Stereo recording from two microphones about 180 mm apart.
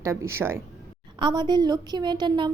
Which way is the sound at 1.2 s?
25° right (ahead or behind).